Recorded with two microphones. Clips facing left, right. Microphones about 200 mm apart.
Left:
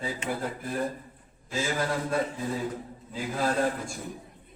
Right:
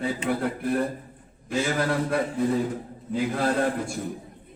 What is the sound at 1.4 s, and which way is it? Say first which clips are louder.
Speech: right 5 dB; 60° right (ahead or behind).